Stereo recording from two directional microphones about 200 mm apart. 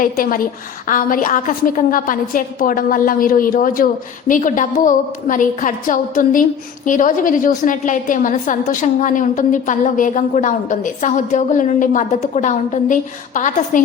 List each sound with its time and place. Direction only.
0.0 s a woman's voice: 45° left (ahead or behind)